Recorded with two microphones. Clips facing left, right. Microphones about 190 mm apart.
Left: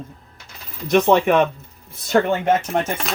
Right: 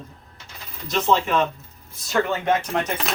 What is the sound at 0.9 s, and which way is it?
Speech, 60° left (ahead or behind).